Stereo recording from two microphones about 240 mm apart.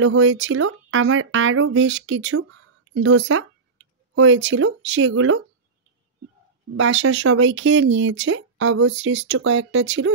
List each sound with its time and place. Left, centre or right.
0.0 s speech: right
6.8 s speech: right